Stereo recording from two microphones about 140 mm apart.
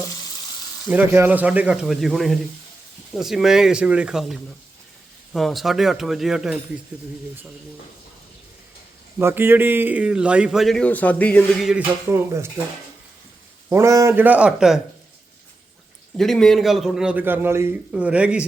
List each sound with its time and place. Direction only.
0.9 s a man's voice: 15° right (ahead or behind)
9.1 s a man's voice: 15° right (ahead or behind)
10.8 s speech: 10° left (ahead or behind)
11.9 s a man's voice: 15° right (ahead or behind)
13.7 s a man's voice: 20° right (ahead or behind)
16.1 s a man's voice: 5° left (ahead or behind)